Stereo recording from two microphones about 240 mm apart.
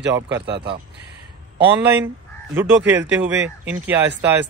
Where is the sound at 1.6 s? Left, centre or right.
Centre.